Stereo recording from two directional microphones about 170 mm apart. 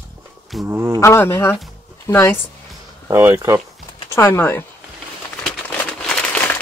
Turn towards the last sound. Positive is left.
turn(degrees=5)  # may be behind; listen again after turning